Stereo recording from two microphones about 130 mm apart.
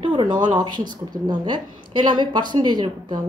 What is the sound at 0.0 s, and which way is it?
Speech, 40° right (ahead or behind).